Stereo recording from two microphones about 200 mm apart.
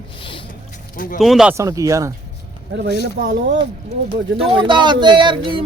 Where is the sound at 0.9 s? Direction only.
45° left (ahead or behind).